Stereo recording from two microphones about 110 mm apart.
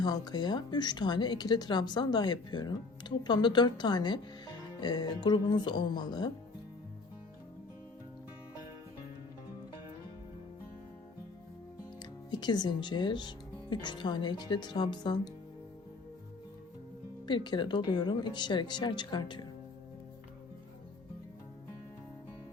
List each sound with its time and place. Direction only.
0.0 s speech: 40° left (ahead or behind)
12.3 s speech: 40° left (ahead or behind)
17.2 s speech: 45° left (ahead or behind)